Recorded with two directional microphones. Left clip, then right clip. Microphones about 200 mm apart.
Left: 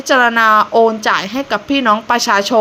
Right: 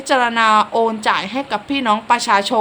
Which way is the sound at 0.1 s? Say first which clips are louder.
Left 4 dB; 15° left (ahead or behind).